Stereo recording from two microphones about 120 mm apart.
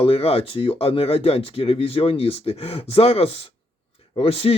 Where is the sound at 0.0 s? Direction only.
55° left (ahead or behind).